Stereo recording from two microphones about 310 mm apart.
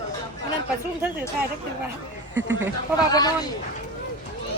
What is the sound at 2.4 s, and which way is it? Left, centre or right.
Speech, right.